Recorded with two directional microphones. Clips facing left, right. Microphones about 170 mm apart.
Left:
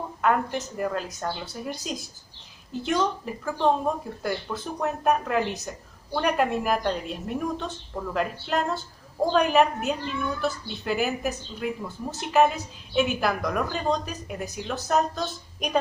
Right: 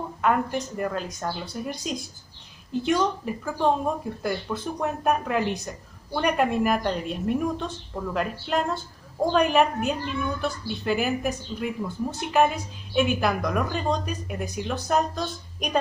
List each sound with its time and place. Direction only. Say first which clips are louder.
0.2 s speech: even; centre (ahead or behind)